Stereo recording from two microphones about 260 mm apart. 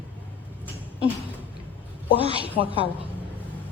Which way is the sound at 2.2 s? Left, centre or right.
Right.